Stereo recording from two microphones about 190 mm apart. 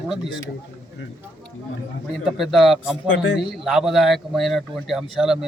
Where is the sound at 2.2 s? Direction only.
Centre (ahead or behind).